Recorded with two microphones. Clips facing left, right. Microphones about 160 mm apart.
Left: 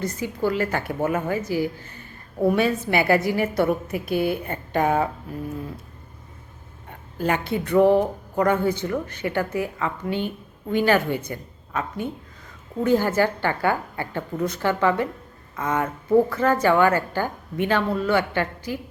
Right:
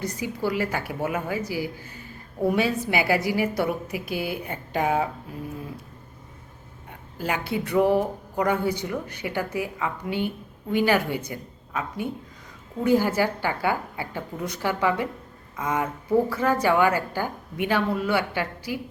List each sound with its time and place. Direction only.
0.0 s a woman's voice: 10° right (ahead or behind)
7.2 s a woman's voice: 10° right (ahead or behind)